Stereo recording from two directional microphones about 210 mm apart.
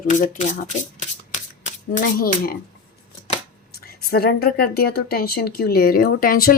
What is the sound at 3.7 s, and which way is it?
Speech, 45° left (ahead or behind).